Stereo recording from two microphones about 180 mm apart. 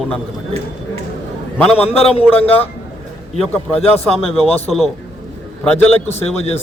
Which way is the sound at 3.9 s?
35° left (ahead or behind).